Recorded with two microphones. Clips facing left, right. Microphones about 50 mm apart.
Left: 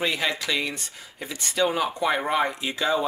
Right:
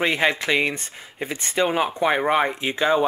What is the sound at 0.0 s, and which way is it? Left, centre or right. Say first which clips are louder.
Speech: right 5 dB; right.